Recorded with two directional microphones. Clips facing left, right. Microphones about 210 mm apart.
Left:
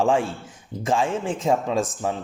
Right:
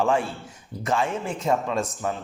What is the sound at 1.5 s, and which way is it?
Speech, 15° left (ahead or behind).